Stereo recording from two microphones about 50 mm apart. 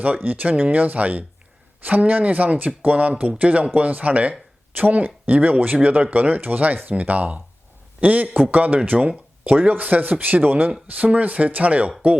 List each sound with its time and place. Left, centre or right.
0.0 s speech: right